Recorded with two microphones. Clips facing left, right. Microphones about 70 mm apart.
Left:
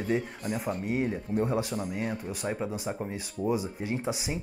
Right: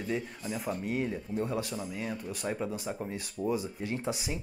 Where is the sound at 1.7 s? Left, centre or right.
Left.